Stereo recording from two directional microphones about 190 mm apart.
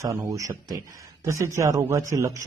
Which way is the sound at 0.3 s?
15° right (ahead or behind).